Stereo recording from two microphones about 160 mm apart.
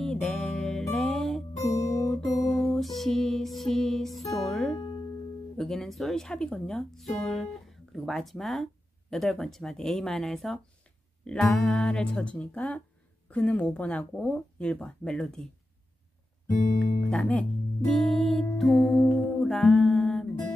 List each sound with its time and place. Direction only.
0.0 s music: 5° left (ahead or behind)
1.6 s music: 20° left (ahead or behind)
2.7 s music: centre (ahead or behind)
5.6 s speech: centre (ahead or behind)
16.6 s speech: 55° left (ahead or behind)
17.1 s speech: 5° left (ahead or behind)
19.4 s music: centre (ahead or behind)